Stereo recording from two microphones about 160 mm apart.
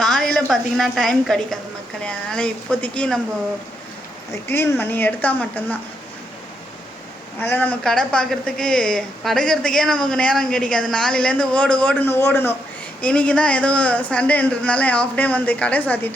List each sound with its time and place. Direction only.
0.0 s a woman's voice: centre (ahead or behind)
4.3 s speech: 15° left (ahead or behind)
7.3 s speech: 10° left (ahead or behind)